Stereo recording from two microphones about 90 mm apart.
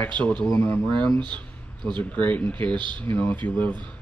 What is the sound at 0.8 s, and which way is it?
Speech, 15° left (ahead or behind).